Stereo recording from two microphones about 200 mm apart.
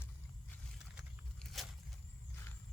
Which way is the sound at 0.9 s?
Centre (ahead or behind).